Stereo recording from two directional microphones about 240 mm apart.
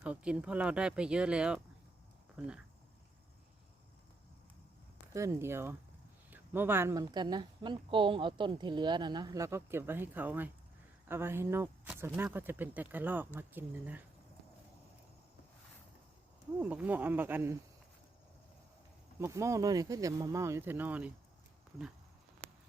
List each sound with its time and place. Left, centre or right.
0.0 s speech: centre
5.1 s speech: centre
16.6 s speech: centre
19.2 s speech: centre